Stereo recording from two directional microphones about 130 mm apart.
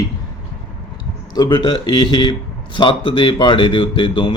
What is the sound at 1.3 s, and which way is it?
Speech, 30° left (ahead or behind).